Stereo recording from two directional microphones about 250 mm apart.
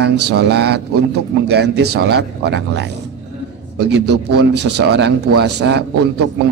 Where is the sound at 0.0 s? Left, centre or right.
Right.